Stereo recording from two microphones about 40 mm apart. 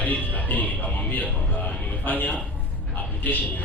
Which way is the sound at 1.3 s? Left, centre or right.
Left.